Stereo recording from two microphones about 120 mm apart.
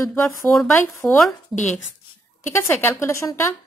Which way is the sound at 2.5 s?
20° left (ahead or behind).